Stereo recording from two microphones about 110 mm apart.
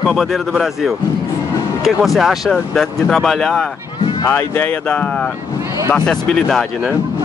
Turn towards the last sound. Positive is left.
turn(degrees=5)  # may be behind; listen again after turning